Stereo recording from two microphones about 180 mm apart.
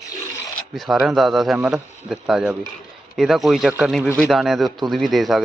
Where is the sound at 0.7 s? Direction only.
Centre (ahead or behind).